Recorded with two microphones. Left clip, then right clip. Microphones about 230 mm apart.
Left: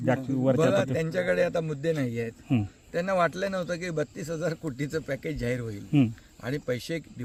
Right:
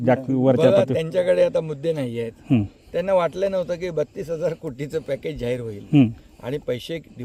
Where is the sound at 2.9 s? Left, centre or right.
Centre.